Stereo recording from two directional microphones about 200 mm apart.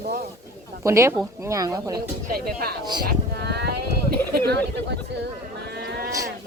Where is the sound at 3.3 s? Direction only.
55° right (ahead or behind).